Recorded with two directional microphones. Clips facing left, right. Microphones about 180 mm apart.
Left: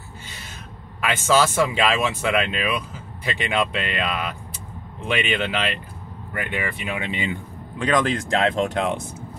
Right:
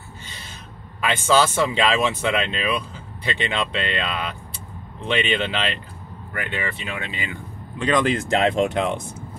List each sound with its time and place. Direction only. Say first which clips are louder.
1.0 s speech: even; 5° left (ahead or behind)
7.8 s speech: right 1 dB; centre (ahead or behind)